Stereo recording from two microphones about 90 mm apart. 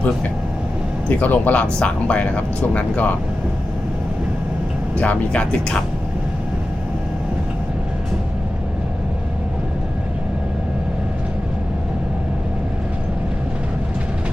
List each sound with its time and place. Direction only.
1.2 s speech: 15° left (ahead or behind)
4.9 s speech: 15° left (ahead or behind)